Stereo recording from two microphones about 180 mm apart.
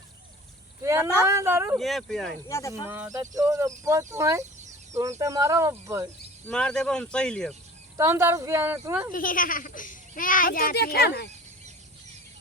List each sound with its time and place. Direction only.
0.8 s a sound: 15° right (ahead or behind)
1.3 s speech: 15° right (ahead or behind)
1.8 s speech: centre (ahead or behind)
2.5 s speech: 15° left (ahead or behind)
2.8 s speech: 10° right (ahead or behind)
6.4 s speech: 5° left (ahead or behind)
7.9 s speech: 15° right (ahead or behind)
9.1 s a child's voice: 50° left (ahead or behind)